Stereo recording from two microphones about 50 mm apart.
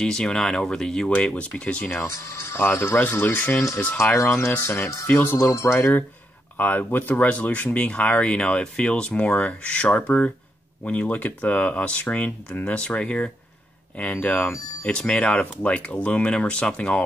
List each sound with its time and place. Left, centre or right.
0.0 s speech: centre
1.9 s speech: left
3.0 s speech: left
3.5 s speech: left
5.5 s speech: left
6.5 s speech: left
14.1 s speech: left
14.9 s speech: centre